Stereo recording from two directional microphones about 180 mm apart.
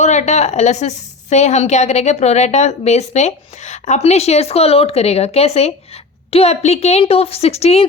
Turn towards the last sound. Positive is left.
turn(degrees=35)  # may be behind; listen again after turning